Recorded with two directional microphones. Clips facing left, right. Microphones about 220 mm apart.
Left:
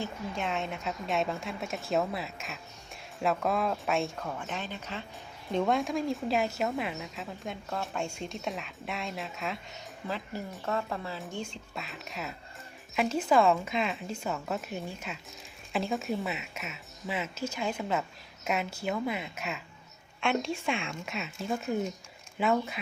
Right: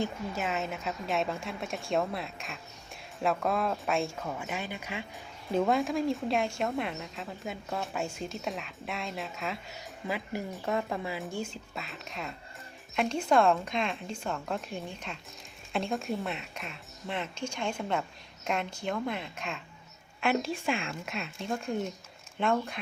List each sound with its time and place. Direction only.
0.3 s a woman's voice: 5° right (ahead or behind)
10.1 s a woman's voice: 15° right (ahead or behind); by 22.8 s 5° left (ahead or behind)